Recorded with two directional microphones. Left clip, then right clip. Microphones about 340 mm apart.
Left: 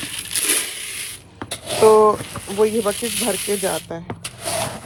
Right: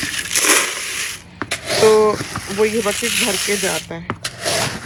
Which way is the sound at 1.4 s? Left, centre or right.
Centre.